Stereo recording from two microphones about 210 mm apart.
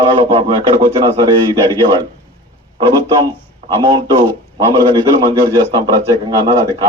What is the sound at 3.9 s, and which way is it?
A man's voice, 20° right (ahead or behind).